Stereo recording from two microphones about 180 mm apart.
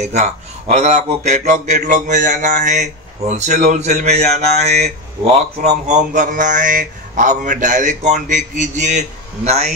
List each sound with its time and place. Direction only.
0.0 s a man's voice: 40° right (ahead or behind)